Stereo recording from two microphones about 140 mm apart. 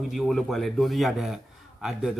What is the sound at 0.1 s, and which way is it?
A man's voice, centre (ahead or behind).